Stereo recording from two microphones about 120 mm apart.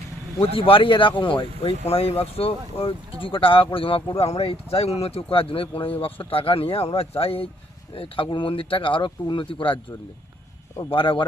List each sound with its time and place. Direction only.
0.5 s speech: 50° left (ahead or behind)
10.8 s speech: 45° left (ahead or behind)